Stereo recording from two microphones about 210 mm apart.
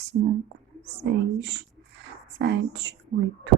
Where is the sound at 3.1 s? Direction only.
35° right (ahead or behind).